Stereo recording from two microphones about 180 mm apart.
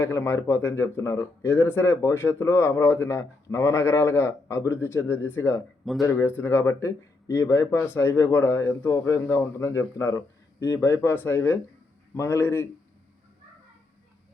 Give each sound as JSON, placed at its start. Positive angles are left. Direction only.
{"t": 0.0, "sound": "speech", "side_deg": 15}